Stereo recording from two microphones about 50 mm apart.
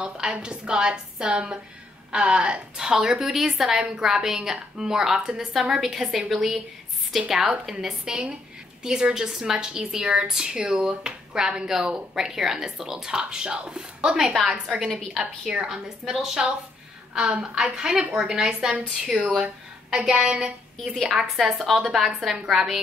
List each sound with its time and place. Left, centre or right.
0.0 s a woman's voice: centre
7.8 s speech: centre
14.5 s a woman's voice: centre
18.7 s a woman's voice: right
20.2 s a woman's voice: centre